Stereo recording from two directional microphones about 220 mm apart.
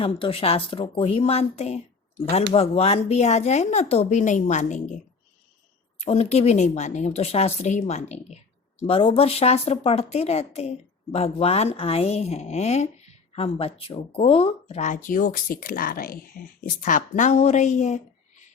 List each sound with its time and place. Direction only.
0.0 s speech: 25° left (ahead or behind)
6.0 s speech: 30° left (ahead or behind)